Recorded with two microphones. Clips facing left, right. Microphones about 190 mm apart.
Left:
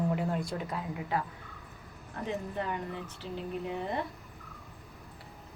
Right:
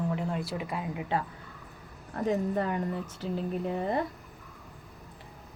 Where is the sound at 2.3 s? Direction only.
40° right (ahead or behind).